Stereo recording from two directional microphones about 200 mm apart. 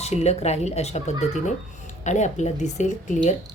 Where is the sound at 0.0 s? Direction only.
30° left (ahead or behind).